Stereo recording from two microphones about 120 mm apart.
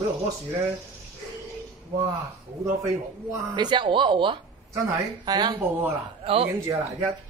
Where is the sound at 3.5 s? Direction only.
40° right (ahead or behind).